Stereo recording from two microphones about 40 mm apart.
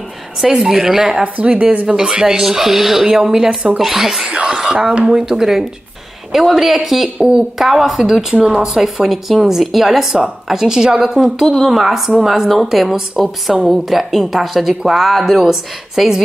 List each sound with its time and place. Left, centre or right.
0.5 s speech: centre
1.2 s speech: right
2.0 s speech: centre
4.3 s music: right
4.6 s speech: right
5.1 s a woman's voice: centre
7.2 s speech: right
7.5 s a woman's voice: centre
14.7 s speech: centre
15.0 s a woman's voice: centre